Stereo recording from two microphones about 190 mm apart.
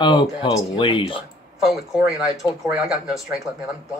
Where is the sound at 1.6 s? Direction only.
Centre (ahead or behind).